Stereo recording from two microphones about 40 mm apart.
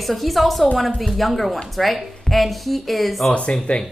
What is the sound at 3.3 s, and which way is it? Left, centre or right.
Speech, left.